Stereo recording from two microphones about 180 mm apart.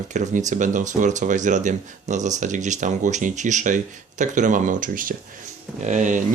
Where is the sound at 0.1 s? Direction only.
40° right (ahead or behind).